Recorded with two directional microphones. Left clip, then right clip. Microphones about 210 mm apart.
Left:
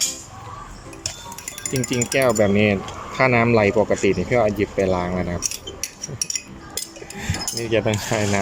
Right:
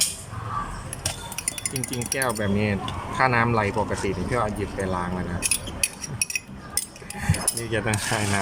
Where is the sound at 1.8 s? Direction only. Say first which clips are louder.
Left 8 dB; 15° left (ahead or behind).